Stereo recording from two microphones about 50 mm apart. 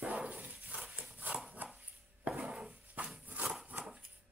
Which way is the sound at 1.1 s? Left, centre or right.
Right.